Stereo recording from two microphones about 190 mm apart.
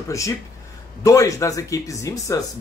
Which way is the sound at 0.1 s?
15° left (ahead or behind).